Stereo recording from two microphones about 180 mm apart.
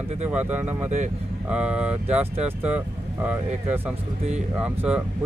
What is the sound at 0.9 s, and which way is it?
Speech, 40° right (ahead or behind).